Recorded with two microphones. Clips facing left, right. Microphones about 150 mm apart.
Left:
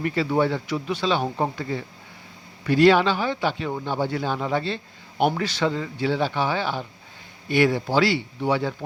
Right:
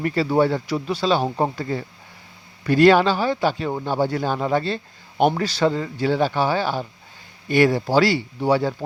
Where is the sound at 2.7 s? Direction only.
45° right (ahead or behind).